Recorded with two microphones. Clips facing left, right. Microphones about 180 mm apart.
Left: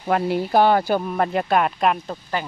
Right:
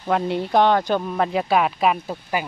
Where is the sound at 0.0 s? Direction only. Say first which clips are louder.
Left 1 dB; 5° left (ahead or behind).